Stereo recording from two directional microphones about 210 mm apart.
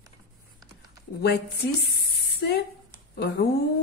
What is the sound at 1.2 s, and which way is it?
Speech, 50° left (ahead or behind).